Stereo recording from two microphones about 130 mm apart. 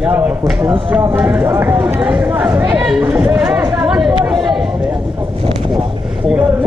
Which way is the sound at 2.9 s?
15° right (ahead or behind).